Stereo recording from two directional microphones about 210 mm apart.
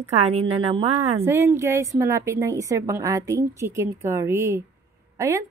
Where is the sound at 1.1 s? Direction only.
15° right (ahead or behind).